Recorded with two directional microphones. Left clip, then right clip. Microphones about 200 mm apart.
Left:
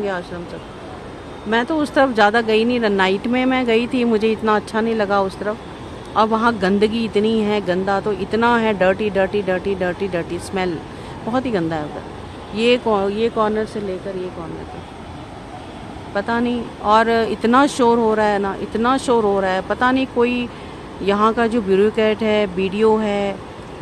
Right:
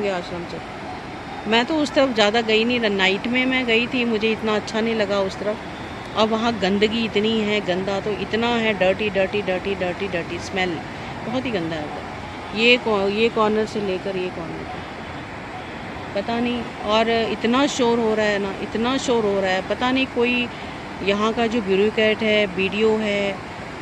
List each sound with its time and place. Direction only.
1.5 s speech: 10° left (ahead or behind)
16.2 s speech: 25° left (ahead or behind)